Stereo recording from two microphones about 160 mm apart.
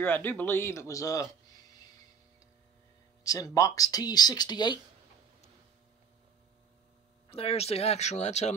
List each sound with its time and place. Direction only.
0.0 s speech: 10° left (ahead or behind)
3.3 s speech: 20° left (ahead or behind)
7.2 s speech: 40° left (ahead or behind)